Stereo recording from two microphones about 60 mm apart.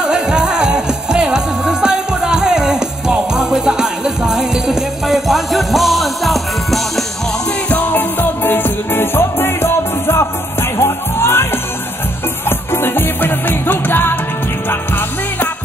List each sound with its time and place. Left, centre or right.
0.0 s music: centre
7.7 s music: left
12.4 s music: left